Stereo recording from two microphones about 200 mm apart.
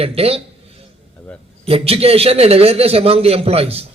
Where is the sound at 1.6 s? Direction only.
30° right (ahead or behind).